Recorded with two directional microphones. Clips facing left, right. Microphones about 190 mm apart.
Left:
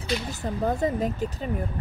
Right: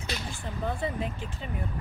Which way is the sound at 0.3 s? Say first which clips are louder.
Left 6 dB; 40° left (ahead or behind).